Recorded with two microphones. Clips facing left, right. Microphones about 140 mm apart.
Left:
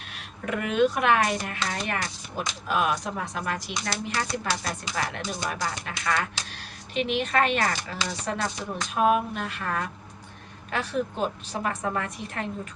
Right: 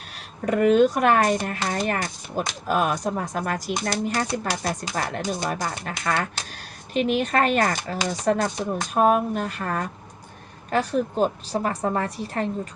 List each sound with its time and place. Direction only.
0.4 s a woman's voice: 40° right (ahead or behind)